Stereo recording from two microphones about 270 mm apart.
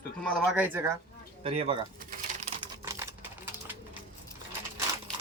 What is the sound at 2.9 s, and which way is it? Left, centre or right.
Typewriter, centre.